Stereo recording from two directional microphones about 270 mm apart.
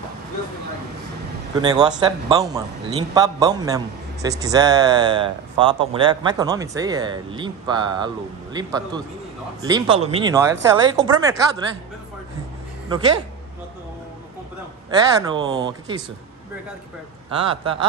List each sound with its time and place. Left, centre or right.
1.5 s a man's voice: centre
14.9 s a man's voice: centre
17.4 s a man's voice: centre